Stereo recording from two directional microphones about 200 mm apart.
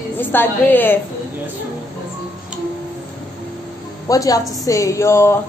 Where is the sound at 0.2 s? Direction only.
10° left (ahead or behind).